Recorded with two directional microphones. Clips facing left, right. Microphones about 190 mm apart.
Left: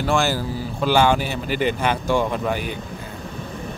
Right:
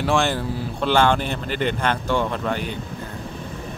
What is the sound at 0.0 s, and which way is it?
Speech, centre (ahead or behind).